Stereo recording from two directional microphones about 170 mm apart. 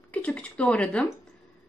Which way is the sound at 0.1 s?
10° left (ahead or behind).